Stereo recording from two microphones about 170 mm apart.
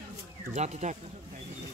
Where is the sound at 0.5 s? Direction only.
45° right (ahead or behind).